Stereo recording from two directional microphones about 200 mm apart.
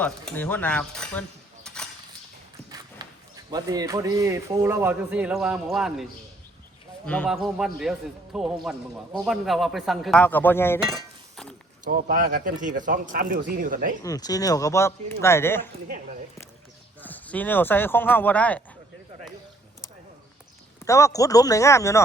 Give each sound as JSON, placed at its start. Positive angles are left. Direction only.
{"t": 0.0, "sound": "speech", "side_deg": 5}
{"t": 1.6, "sound": "a sound", "side_deg": 5}
{"t": 2.6, "sound": "clip-clop", "side_deg": -20}
{"t": 3.5, "sound": "a man's voice", "side_deg": -20}
{"t": 11.9, "sound": "speech", "side_deg": -45}
{"t": 14.0, "sound": "speech", "side_deg": 20}
{"t": 17.0, "sound": "speech", "side_deg": 10}
{"t": 20.8, "sound": "speech", "side_deg": 15}